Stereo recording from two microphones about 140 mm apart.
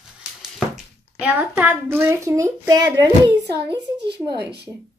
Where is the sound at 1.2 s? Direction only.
10° right (ahead or behind); by 3.8 s 30° right (ahead or behind).